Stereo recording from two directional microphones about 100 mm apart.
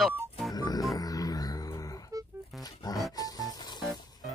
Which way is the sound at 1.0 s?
35° left (ahead or behind).